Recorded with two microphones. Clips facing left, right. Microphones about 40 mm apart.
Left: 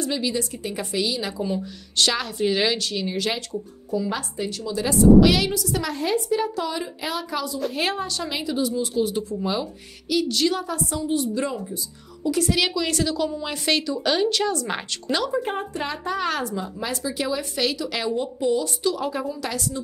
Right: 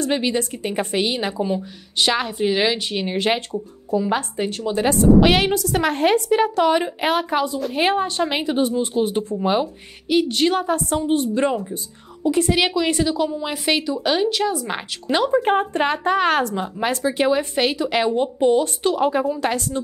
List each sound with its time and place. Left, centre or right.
0.0 s speech: right
1.4 s speech: right
2.9 s a woman's voice: right; by 14.8 s centre
15.0 s speech: right
15.4 s speech: right